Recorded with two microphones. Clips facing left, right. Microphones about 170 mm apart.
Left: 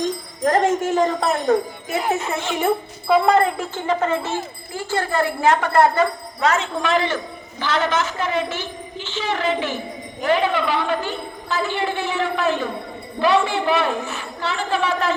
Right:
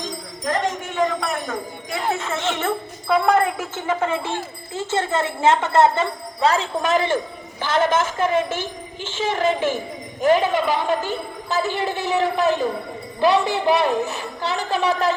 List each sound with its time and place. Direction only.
0.4 s speech: 50° left (ahead or behind)
1.0 s speech: 35° left (ahead or behind)
1.9 s speech: 20° left (ahead or behind)
3.1 s speech: centre (ahead or behind)
4.7 s a woman's voice: 20° right (ahead or behind)